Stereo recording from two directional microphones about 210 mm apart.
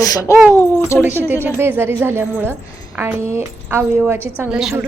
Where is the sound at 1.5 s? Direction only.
10° right (ahead or behind).